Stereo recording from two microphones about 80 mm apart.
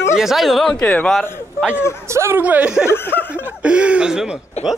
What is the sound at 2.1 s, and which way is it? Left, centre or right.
Speech, right.